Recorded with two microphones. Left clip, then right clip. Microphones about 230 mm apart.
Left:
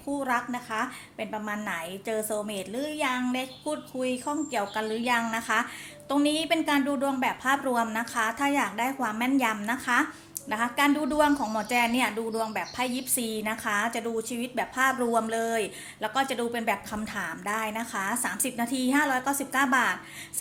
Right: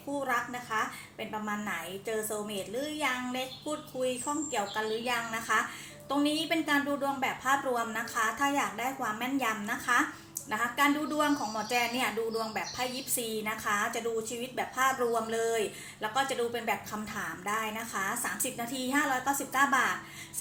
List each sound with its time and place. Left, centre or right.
0.3 s a woman's voice: left